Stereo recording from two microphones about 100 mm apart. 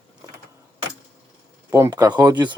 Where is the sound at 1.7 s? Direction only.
35° right (ahead or behind).